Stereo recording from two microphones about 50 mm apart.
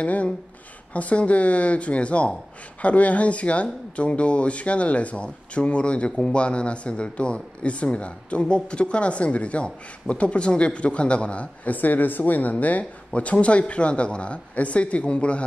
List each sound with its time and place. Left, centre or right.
0.0 s speech: left